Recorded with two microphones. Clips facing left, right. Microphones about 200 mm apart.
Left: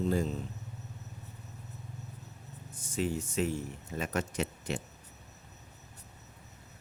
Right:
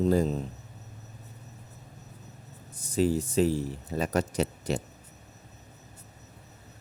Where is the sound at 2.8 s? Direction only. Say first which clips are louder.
Right 7 dB; 35° right (ahead or behind).